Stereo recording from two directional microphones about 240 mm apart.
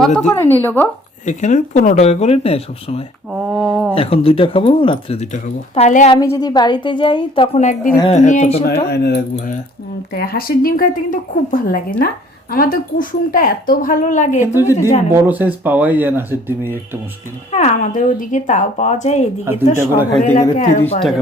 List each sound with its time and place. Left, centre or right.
0.0 s a woman's voice: centre
1.2 s speech: left
3.3 s speech: centre
3.9 s speech: left
6.1 s speech: centre
8.6 s a woman's voice: left
14.4 s speech: centre
17.5 s speech: left
19.5 s speech: centre
20.6 s a woman's voice: left